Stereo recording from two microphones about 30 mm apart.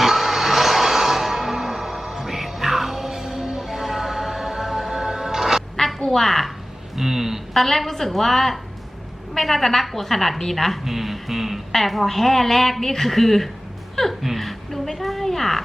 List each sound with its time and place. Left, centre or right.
0.0 s music: centre
5.7 s a sound: centre
6.1 s a woman's voice: centre
6.9 s a sound: centre
7.5 s a woman's voice: centre
10.8 s speech: centre
12.0 s a woman's voice: centre
13.9 s music: centre
14.2 s a sound: centre